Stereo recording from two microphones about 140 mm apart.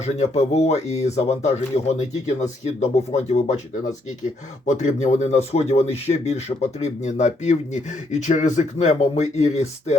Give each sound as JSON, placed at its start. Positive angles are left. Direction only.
{"t": 0.0, "sound": "speech", "side_deg": 50}